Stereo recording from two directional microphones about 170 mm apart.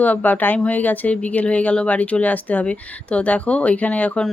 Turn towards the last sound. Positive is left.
turn(degrees=5)  # may be behind; listen again after turning